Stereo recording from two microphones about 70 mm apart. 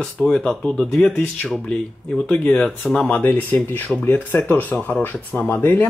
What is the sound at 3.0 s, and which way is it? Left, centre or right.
Speech, left.